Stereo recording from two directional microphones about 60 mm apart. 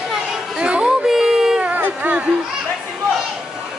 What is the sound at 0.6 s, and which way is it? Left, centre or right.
Music, centre.